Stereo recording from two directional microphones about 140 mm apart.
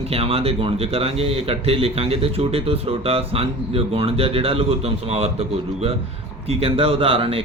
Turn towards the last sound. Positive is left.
turn(degrees=-40)  # may be behind; listen again after turning